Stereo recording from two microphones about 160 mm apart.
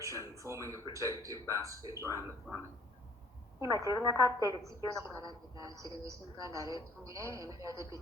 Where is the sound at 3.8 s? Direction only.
20° right (ahead or behind).